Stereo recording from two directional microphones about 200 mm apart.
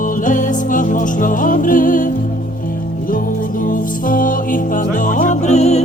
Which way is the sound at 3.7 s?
45° left (ahead or behind).